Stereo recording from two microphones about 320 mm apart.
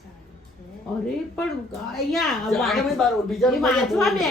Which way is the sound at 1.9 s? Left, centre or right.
Centre.